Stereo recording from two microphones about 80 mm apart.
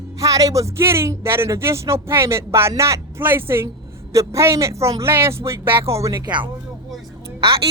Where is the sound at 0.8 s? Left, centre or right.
Right.